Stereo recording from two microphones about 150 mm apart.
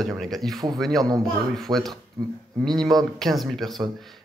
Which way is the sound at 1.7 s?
25° right (ahead or behind).